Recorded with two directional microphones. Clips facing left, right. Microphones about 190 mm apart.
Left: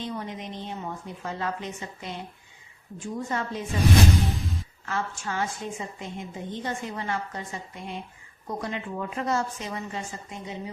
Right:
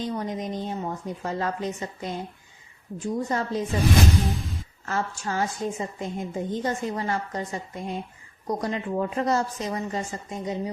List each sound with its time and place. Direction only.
0.0 s a woman's voice: 40° right (ahead or behind)
4.9 s a woman's voice: 40° right (ahead or behind)